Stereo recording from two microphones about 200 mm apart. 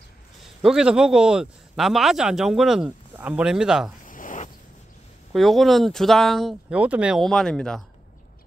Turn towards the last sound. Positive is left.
turn(degrees=5)  # may be behind; listen again after turning